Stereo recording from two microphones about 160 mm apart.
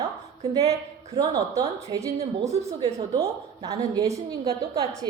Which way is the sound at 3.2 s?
20° right (ahead or behind).